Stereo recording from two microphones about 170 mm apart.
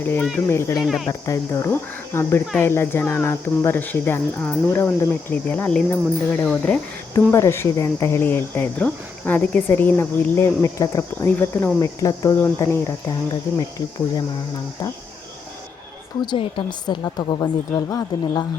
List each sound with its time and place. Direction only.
0.0 s speech: 10° left (ahead or behind)
0.8 s speech: centre (ahead or behind)
1.2 s a woman's voice: 20° left (ahead or behind)
16.2 s a woman's voice: 30° left (ahead or behind)